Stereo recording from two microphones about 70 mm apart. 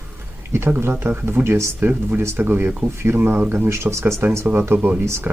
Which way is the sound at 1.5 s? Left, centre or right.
Right.